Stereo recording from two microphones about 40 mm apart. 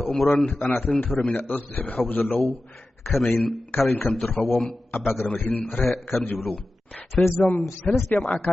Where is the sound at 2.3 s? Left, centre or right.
Centre.